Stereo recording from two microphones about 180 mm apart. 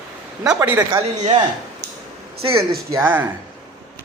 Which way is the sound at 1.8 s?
70° right (ahead or behind).